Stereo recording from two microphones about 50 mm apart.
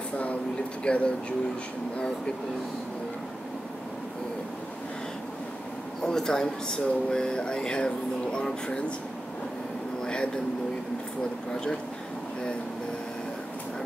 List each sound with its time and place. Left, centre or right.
0.8 s speech: left
6.0 s speech: centre
10.0 s a sound: centre